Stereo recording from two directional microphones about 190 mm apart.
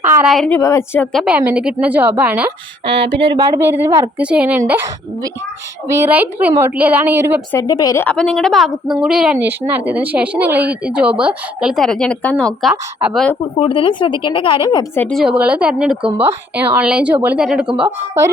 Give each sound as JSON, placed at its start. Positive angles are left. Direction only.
{"t": 0.3, "sound": "a woman's voice", "side_deg": 5}
{"t": 1.1, "sound": "a woman's voice", "side_deg": -5}
{"t": 3.1, "sound": "a woman's voice", "side_deg": -25}
{"t": 5.9, "sound": "a woman's voice", "side_deg": -10}
{"t": 7.5, "sound": "a woman's voice", "side_deg": 20}
{"t": 8.0, "sound": "a woman's voice", "side_deg": 5}
{"t": 12.7, "sound": "a woman's voice", "side_deg": -10}
{"t": 13.6, "sound": "speech", "side_deg": 30}
{"t": 14.9, "sound": "a woman's voice", "side_deg": 5}
{"t": 15.4, "sound": "a woman's voice", "side_deg": -5}